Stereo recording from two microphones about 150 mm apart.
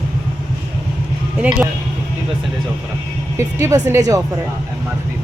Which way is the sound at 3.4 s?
20° right (ahead or behind).